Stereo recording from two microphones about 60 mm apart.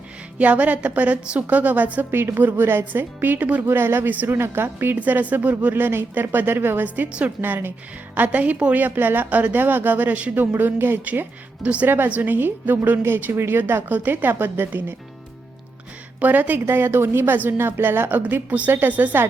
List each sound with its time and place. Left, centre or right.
0.3 s a woman's voice: right
2.0 s speech: right
3.7 s speech: right
4.1 s a woman's voice: right
4.4 s speech: right
4.9 s speech: right
7.1 s a woman's voice: centre
7.4 s a woman's voice: right
10.6 s speech: right
11.0 s a woman's voice: right
13.0 s speech: right
16.2 s speech: right
18.4 s a woman's voice: right